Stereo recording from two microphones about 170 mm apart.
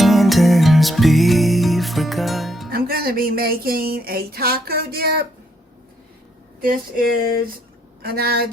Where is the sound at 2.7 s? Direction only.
60° right (ahead or behind).